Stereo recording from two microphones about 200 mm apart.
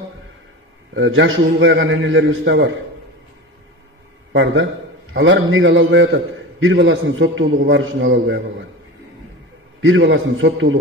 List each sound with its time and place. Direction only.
0.9 s a man's voice: 70° right (ahead or behind)
4.3 s a man's voice: 65° right (ahead or behind)
7.7 s a man's voice: 65° right (ahead or behind)
9.8 s a man's voice: 70° right (ahead or behind)